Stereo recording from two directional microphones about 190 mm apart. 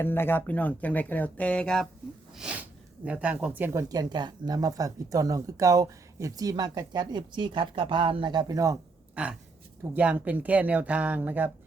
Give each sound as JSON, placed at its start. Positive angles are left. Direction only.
{"t": 0.0, "sound": "speech", "side_deg": 10}
{"t": 9.2, "sound": "speech", "side_deg": -5}